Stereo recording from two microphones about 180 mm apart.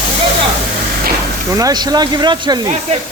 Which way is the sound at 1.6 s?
20° right (ahead or behind).